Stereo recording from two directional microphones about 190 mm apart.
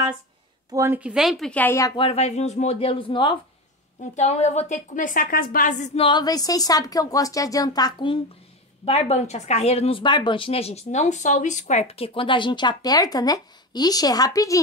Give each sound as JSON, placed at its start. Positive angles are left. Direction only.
{"t": 0.7, "sound": "speech", "side_deg": -10}
{"t": 4.1, "sound": "speech", "side_deg": 35}
{"t": 8.8, "sound": "speech", "side_deg": 35}